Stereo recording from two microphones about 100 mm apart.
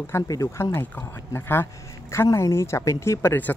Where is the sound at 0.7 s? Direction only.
25° left (ahead or behind).